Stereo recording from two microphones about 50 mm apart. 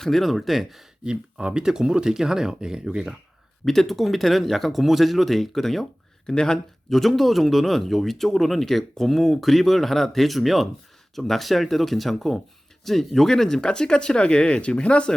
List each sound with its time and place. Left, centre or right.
0.0 s speech: centre
1.0 s speech: centre
3.7 s speech: centre
7.0 s speech: centre; by 15.1 s left